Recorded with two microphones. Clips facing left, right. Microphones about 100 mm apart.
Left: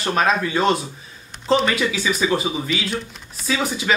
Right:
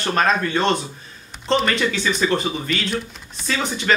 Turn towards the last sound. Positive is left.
turn(degrees=5)  # may be behind; listen again after turning